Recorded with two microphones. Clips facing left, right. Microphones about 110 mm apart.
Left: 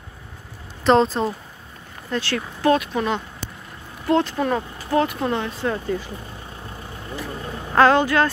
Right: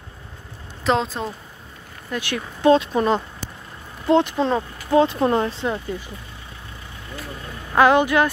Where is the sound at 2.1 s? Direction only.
15° right (ahead or behind); by 3.2 s 35° right (ahead or behind).